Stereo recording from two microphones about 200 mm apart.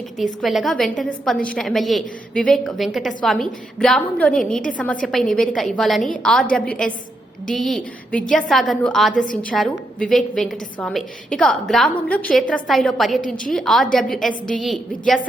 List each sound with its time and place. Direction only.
0.2 s a woman's voice: centre (ahead or behind)
9.1 s a woman's voice: 40° left (ahead or behind)
9.4 s a woman's voice: 5° left (ahead or behind)